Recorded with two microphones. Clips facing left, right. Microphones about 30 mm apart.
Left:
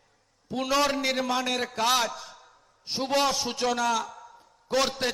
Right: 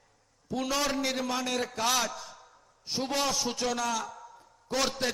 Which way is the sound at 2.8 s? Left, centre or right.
Left.